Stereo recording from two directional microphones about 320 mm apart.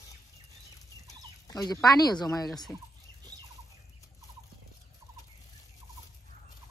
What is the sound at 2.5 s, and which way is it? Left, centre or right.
Speech, centre.